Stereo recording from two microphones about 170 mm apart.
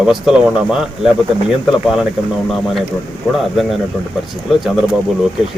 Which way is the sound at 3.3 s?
Centre (ahead or behind).